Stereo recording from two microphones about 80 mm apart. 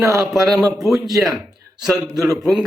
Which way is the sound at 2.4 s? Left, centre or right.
Centre.